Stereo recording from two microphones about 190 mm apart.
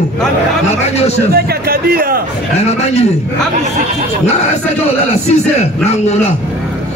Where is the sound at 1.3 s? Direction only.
50° right (ahead or behind).